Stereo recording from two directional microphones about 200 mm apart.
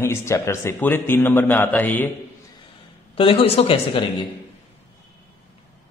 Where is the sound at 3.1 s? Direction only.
25° left (ahead or behind).